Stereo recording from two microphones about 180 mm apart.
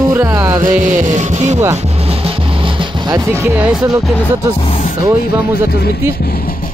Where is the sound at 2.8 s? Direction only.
20° right (ahead or behind).